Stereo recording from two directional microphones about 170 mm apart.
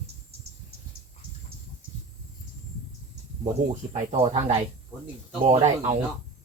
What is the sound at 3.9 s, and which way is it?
Speech, 35° right (ahead or behind).